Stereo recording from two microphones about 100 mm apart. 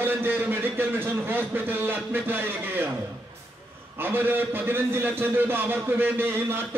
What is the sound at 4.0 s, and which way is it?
A man's voice, 20° right (ahead or behind).